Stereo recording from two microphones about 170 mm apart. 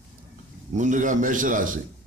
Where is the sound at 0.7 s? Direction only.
45° right (ahead or behind).